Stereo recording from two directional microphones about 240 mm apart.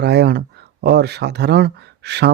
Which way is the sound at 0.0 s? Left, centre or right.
Right.